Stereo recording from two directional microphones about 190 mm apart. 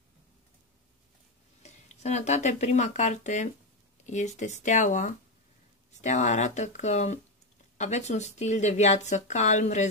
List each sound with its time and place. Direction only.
1.6 s speech: 35° left (ahead or behind)